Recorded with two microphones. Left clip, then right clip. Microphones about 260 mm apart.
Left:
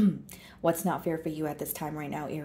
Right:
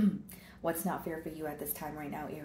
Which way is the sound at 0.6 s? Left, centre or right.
Left.